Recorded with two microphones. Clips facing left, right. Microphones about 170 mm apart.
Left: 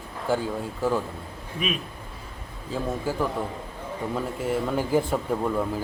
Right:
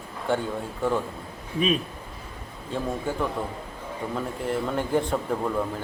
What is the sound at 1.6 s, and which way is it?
Speech, 35° right (ahead or behind).